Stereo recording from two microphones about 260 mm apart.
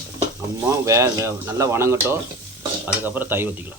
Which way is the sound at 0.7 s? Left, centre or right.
Centre.